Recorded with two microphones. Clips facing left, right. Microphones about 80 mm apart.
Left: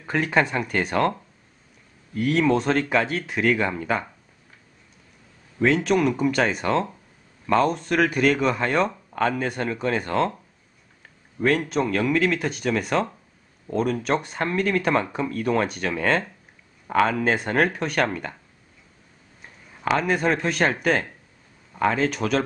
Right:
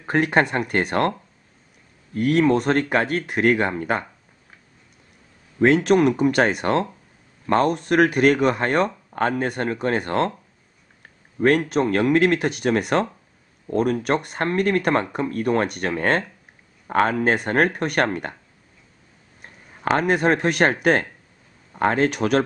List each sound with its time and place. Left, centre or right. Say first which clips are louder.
0.0 s speech: right 3 dB; right
2.1 s speech: right 3 dB; right
6.2 s speech: right 3 dB; right
11.7 s speech: right 4 dB; right
19.4 s speech: right 2 dB; right